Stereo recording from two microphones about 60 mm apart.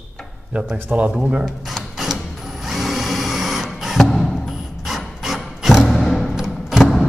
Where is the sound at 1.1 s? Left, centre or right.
Centre.